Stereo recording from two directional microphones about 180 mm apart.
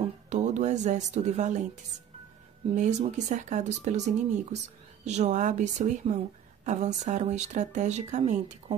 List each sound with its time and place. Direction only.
0.3 s a woman's voice: 40° right (ahead or behind)
2.7 s speech: 40° right (ahead or behind)